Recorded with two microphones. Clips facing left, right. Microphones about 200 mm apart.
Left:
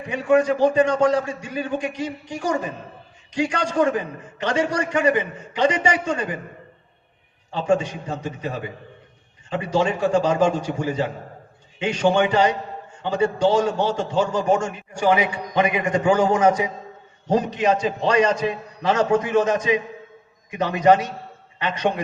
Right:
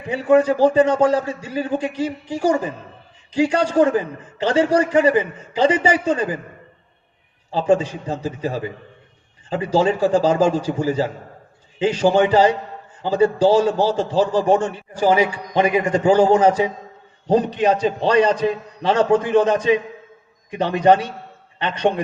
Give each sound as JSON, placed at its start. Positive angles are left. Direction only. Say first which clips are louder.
{"t": 0.1, "sound": "a man's voice", "louder": "right 3 dB", "side_deg": -30}
{"t": 7.5, "sound": "a man's voice", "louder": "right 3 dB", "side_deg": -30}